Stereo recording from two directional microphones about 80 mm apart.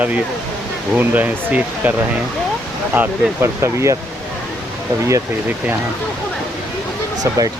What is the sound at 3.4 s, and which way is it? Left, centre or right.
Speech, right.